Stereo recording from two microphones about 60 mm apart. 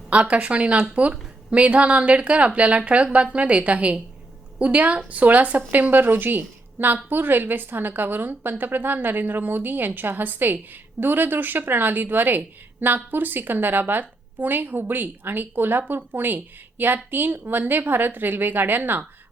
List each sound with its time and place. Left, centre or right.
0.1 s a woman's voice: right